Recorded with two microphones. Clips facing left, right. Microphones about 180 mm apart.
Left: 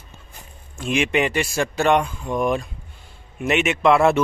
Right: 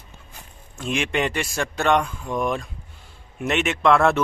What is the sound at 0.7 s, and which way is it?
Speech, 5° left (ahead or behind).